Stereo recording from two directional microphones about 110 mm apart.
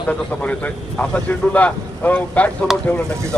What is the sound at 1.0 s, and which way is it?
Speech, 10° left (ahead or behind).